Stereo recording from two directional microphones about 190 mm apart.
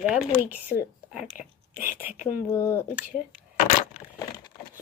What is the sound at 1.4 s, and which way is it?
Speech, 45° left (ahead or behind).